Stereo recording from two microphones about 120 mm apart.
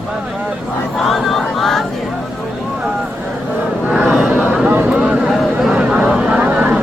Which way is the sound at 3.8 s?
10° right (ahead or behind).